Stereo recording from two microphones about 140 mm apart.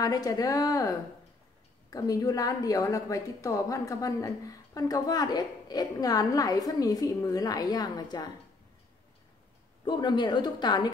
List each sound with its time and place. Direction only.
0.0 s a woman's voice: 25° left (ahead or behind)
9.8 s a woman's voice: 30° left (ahead or behind)